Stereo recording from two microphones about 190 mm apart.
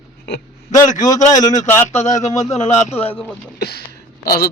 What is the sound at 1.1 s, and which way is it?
Speech, 20° left (ahead or behind).